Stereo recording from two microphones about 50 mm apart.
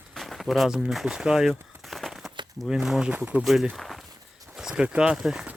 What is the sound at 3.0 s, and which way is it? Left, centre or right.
Speech, right.